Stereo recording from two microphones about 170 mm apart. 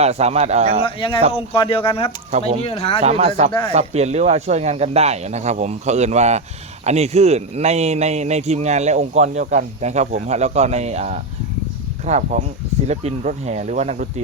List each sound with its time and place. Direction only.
0.0 s speech: 40° right (ahead or behind)
0.8 s speech: 30° left (ahead or behind)
3.0 s speech: 40° right (ahead or behind)